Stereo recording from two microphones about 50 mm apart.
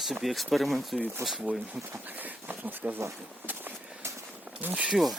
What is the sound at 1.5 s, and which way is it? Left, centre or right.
Speech, right.